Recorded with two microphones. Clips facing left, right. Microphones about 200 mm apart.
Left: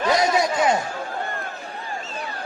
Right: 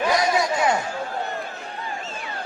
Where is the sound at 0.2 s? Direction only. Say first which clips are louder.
Left 1 dB; 20° left (ahead or behind).